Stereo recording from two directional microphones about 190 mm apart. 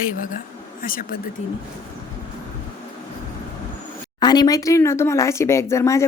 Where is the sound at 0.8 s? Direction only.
50° left (ahead or behind).